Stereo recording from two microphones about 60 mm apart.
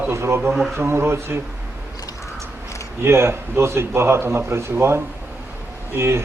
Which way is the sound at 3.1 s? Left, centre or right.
Right.